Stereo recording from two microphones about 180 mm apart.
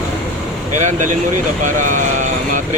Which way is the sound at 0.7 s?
40° right (ahead or behind).